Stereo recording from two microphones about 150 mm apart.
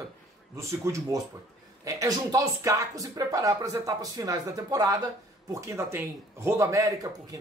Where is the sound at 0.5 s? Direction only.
20° right (ahead or behind).